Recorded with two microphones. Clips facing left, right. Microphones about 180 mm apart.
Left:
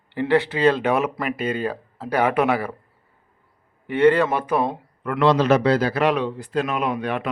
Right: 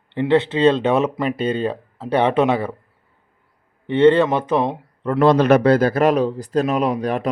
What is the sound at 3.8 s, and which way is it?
Speech, 25° right (ahead or behind).